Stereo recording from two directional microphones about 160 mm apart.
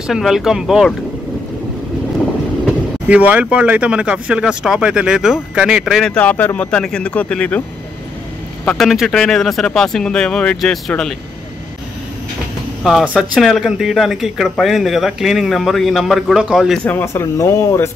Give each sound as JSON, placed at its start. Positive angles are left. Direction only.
{"t": 0.0, "sound": "speech", "side_deg": -5}
{"t": 3.1, "sound": "speech", "side_deg": -10}
{"t": 8.6, "sound": "speech", "side_deg": 0}
{"t": 12.8, "sound": "speech", "side_deg": -5}
{"t": 16.8, "sound": "speech", "side_deg": 15}